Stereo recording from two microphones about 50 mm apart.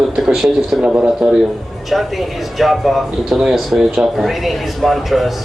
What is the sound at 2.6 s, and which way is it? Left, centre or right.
Speech, centre.